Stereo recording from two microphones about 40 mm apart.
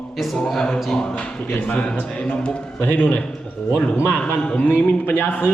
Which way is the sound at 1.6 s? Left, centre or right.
Left.